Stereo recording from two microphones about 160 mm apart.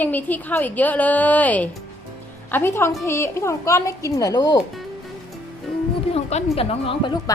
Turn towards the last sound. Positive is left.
turn(degrees=35)  # may be behind; listen again after turning